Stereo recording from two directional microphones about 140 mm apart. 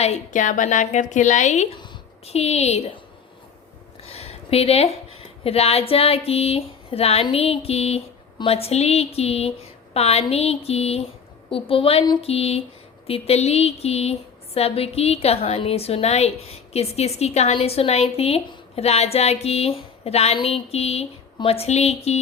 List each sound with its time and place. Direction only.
0.0 s a woman's voice: 60° left (ahead or behind)
4.0 s a sound: 45° left (ahead or behind)
5.4 s a woman's voice: 45° left (ahead or behind)